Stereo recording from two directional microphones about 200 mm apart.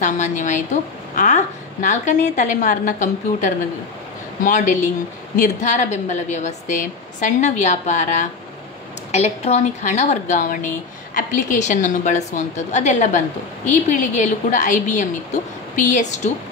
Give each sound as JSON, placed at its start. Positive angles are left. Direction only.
{"t": 0.0, "sound": "a woman's voice", "side_deg": 35}